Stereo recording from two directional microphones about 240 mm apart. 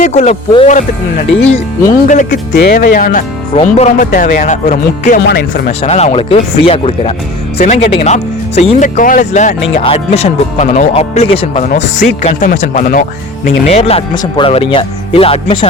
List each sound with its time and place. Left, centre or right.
0.0 s speech: left
2.0 s speech: left
5.2 s speech: left
5.8 s speech: left